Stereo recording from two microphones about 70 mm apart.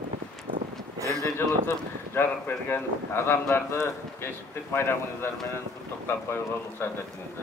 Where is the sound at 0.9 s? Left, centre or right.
Right.